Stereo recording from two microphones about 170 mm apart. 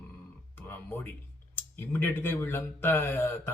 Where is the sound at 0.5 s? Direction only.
10° left (ahead or behind).